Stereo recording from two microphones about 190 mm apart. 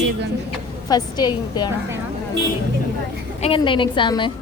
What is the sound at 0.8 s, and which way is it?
Speech, 20° left (ahead or behind).